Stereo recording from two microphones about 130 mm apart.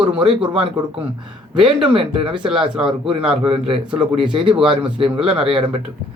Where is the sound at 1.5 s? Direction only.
45° right (ahead or behind).